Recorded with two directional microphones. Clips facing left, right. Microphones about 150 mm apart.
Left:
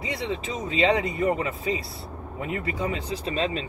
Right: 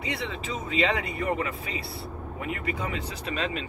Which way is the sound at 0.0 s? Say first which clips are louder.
Left 3 dB; 35° left (ahead or behind).